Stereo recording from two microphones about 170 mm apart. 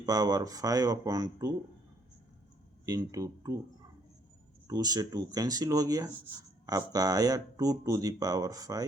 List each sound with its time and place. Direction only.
0.0 s speech: 20° right (ahead or behind)
2.8 s speech: 20° right (ahead or behind)
4.7 s speech: 20° right (ahead or behind)